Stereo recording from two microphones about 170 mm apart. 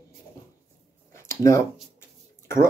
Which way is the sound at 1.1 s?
15° left (ahead or behind).